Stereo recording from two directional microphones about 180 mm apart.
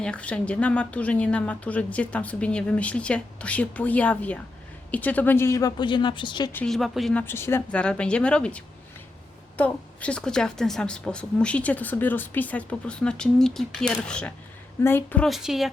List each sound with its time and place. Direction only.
0.0 s speech: 5° left (ahead or behind); by 6.5 s 25° left (ahead or behind)
6.5 s a woman's voice: 5° left (ahead or behind)